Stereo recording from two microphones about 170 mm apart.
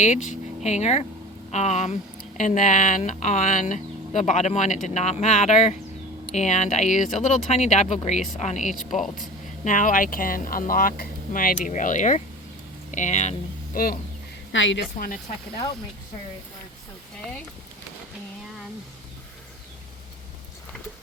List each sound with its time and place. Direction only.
0.0 s speech: 45° left (ahead or behind)
14.5 s a woman's voice: 90° left
14.9 s speech: 55° left (ahead or behind)